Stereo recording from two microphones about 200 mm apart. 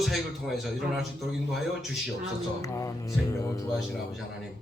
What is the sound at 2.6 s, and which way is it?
Speech, 15° left (ahead or behind).